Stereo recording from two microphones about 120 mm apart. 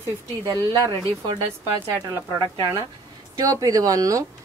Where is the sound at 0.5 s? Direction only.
35° right (ahead or behind).